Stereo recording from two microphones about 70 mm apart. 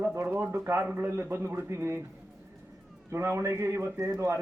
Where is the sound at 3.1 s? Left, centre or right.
Right.